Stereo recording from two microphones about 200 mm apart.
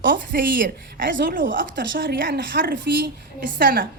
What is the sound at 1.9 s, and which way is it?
A woman's voice, 45° right (ahead or behind).